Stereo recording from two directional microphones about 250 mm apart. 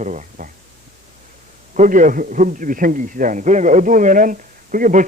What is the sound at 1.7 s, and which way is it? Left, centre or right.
A man's voice, right.